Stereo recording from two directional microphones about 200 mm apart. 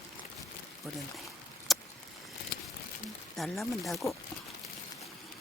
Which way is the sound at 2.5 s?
55° left (ahead or behind).